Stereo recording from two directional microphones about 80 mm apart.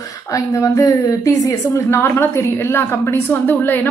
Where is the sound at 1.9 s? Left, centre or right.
Left.